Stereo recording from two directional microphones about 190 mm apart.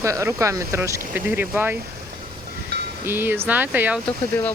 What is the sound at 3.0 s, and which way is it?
Speech, 10° right (ahead or behind).